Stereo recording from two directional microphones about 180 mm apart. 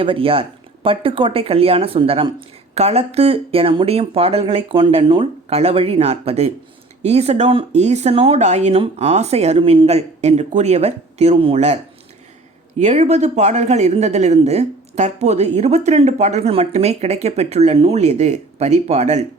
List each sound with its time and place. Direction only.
0.0 s speech: 30° right (ahead or behind)
12.8 s speech: 40° right (ahead or behind)